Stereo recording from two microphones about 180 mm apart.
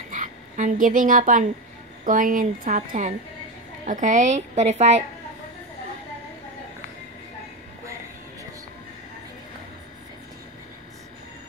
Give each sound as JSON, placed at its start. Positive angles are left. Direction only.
{"t": 0.1, "sound": "a woman's voice", "side_deg": -45}